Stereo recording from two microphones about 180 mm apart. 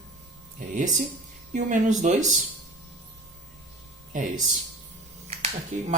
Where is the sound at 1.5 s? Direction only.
40° right (ahead or behind).